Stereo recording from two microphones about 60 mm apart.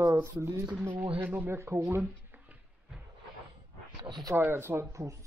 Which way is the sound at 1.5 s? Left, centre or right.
Right.